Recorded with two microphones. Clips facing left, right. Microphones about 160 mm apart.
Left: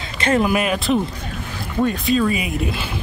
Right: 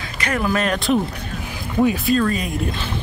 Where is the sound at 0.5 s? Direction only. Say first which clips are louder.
Left 1 dB; 10° left (ahead or behind).